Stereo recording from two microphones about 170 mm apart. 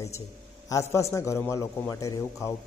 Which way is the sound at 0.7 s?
20° left (ahead or behind).